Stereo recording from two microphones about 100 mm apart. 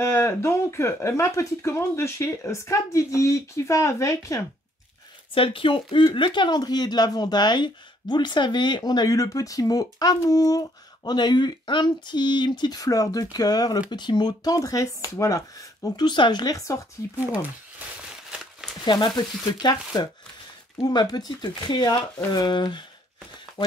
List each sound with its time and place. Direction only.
0.0 s speech: 30° left (ahead or behind)
5.3 s speech: 60° left (ahead or behind); by 16.1 s 35° left (ahead or behind)
16.1 s speech: 50° left (ahead or behind); by 17.1 s 30° left (ahead or behind)
18.9 s speech: 50° left (ahead or behind)